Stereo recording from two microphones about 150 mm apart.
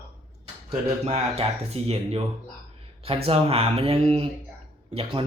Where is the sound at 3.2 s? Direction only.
40° right (ahead or behind).